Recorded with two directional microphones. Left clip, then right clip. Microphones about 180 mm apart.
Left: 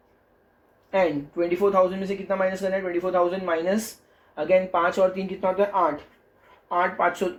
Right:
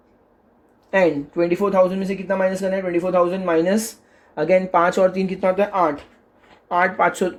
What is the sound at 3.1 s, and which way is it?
Speech, 65° right (ahead or behind).